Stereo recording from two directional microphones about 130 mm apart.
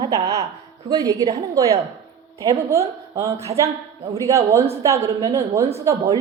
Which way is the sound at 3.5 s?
50° right (ahead or behind).